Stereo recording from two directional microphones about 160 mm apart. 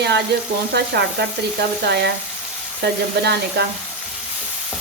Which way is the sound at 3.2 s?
90° right.